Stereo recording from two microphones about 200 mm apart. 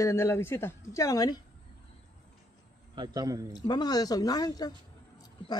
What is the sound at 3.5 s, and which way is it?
Speech, 20° left (ahead or behind).